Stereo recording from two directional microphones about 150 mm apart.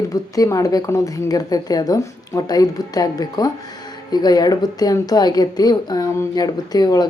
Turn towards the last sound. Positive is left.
turn(degrees=25)  # may be behind; listen again after turning